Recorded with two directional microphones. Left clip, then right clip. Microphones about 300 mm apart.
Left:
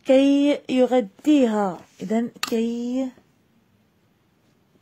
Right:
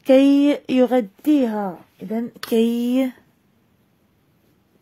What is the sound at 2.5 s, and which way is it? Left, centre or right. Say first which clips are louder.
Speech: right 8 dB; right.